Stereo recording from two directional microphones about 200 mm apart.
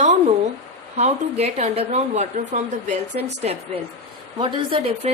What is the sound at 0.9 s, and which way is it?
A woman's voice, 30° right (ahead or behind).